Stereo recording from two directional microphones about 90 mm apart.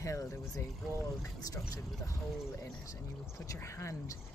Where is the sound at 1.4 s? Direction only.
40° left (ahead or behind).